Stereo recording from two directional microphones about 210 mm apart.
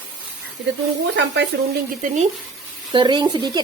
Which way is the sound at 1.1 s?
55° right (ahead or behind).